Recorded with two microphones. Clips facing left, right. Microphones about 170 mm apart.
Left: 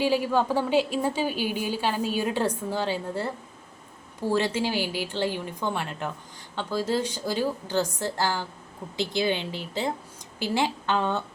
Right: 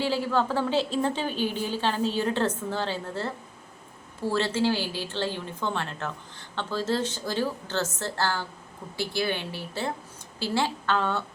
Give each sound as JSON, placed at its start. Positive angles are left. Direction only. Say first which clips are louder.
{"t": 0.0, "sound": "a woman's voice", "louder": "left 2 dB", "side_deg": 15}